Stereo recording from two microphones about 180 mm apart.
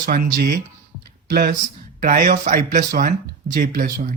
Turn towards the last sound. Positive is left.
turn(degrees=-50)  # may be behind; listen again after turning